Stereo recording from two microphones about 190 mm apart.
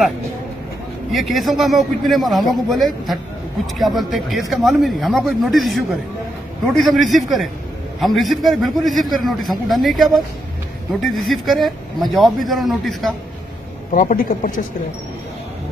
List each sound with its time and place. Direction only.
1.1 s speech: centre (ahead or behind)
13.9 s speech: 45° left (ahead or behind)